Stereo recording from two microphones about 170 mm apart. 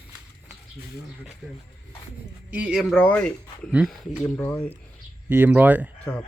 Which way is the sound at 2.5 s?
5° right (ahead or behind).